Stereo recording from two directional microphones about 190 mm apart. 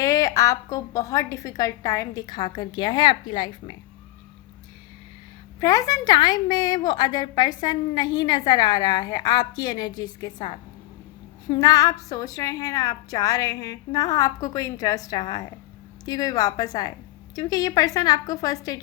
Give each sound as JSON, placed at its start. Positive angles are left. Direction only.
{"t": 0.0, "sound": "a woman's voice", "side_deg": 20}
{"t": 5.5, "sound": "a woman's voice", "side_deg": 20}